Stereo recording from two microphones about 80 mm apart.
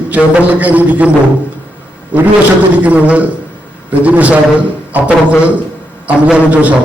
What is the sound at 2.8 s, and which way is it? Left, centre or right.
A man's voice, centre.